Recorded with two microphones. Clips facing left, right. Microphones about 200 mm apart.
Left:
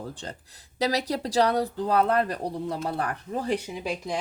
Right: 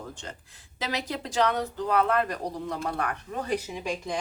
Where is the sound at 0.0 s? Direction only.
35° left (ahead or behind).